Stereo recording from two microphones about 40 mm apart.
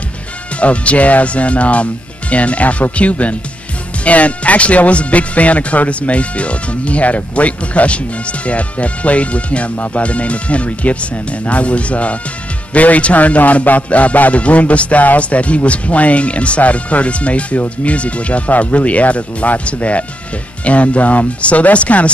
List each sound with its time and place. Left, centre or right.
0.6 s a man's voice: left